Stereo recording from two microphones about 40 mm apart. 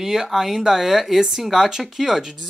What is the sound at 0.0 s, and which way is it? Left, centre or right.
Speech, centre.